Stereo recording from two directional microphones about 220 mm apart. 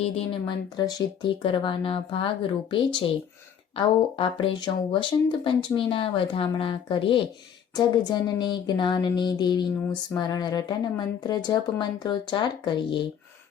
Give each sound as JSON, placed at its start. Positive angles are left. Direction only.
{"t": 0.0, "sound": "speech", "side_deg": 25}